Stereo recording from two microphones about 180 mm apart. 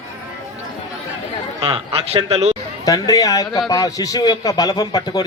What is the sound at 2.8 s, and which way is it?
A man's voice, 20° left (ahead or behind).